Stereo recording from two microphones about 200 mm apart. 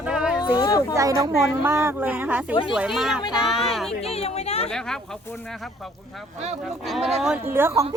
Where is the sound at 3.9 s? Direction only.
30° left (ahead or behind).